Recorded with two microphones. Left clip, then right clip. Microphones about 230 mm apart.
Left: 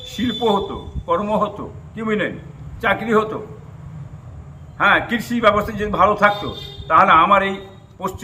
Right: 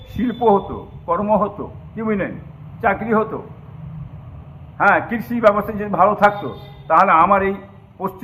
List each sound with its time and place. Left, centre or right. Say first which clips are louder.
0.2 s a man's voice: right 3 dB; left
4.8 s a man's voice: even; left